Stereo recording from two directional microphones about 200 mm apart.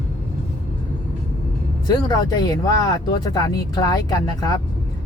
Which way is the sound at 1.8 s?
20° left (ahead or behind).